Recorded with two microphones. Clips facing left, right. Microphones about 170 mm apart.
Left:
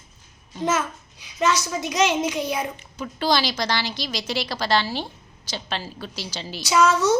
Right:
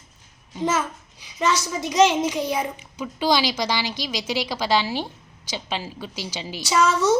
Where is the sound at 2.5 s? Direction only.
10° right (ahead or behind).